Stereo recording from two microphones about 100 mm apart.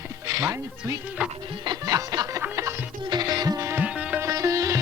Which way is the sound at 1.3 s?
60° right (ahead or behind).